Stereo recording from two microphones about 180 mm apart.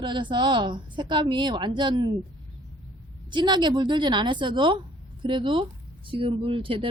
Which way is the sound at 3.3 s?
25° right (ahead or behind).